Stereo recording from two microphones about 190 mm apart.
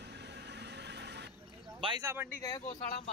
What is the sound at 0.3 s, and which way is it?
Vehicle, 65° right (ahead or behind).